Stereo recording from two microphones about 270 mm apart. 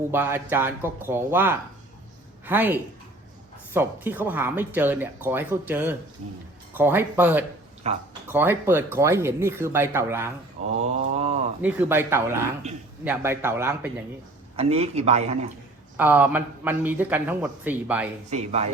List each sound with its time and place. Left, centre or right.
0.1 s speech: centre
3.8 s speech: centre
7.9 s a man's voice: right
8.3 s speech: centre
10.8 s a sound: right
11.6 s speech: centre
14.5 s a man's voice: right
16.0 s speech: centre
18.3 s a man's voice: right